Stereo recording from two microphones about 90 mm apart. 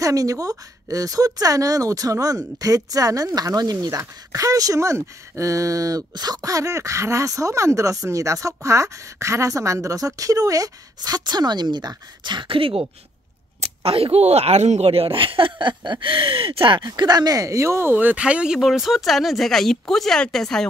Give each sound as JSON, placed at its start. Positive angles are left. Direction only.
{"t": 0.0, "sound": "speech", "side_deg": -40}
{"t": 13.6, "sound": "a sound", "side_deg": -90}
{"t": 14.9, "sound": "speech", "side_deg": -90}
{"t": 16.8, "sound": "speech", "side_deg": -50}
{"t": 17.9, "sound": "speech", "side_deg": -15}